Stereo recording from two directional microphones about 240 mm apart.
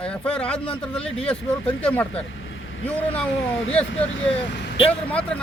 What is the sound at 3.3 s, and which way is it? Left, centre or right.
Speech, left.